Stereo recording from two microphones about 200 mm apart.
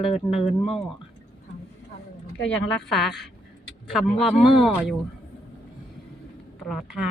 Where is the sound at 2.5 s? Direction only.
5° left (ahead or behind).